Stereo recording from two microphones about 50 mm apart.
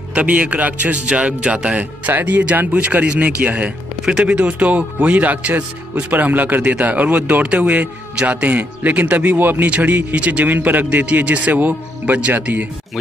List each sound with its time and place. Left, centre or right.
0.1 s speech: right
1.8 s speech: right